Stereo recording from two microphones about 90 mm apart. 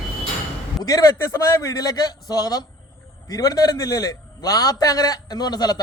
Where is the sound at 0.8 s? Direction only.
40° left (ahead or behind).